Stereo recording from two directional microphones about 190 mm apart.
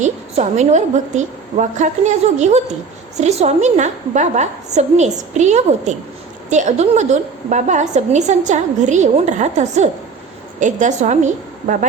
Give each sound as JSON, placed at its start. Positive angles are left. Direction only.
{"t": 0.0, "sound": "a woman's voice", "side_deg": -35}